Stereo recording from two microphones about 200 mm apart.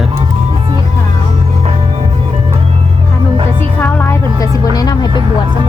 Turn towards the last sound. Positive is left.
turn(degrees=20)  # may be behind; listen again after turning